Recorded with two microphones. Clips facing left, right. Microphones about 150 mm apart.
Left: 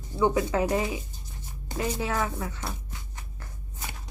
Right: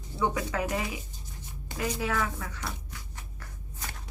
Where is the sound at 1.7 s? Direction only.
25° left (ahead or behind).